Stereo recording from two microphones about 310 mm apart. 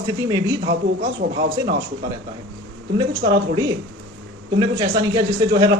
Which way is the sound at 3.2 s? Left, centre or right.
Right.